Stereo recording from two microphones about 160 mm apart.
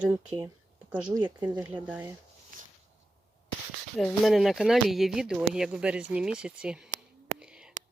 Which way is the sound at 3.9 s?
Centre (ahead or behind).